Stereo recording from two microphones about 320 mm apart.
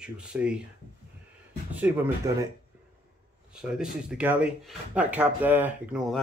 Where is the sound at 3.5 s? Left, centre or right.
Centre.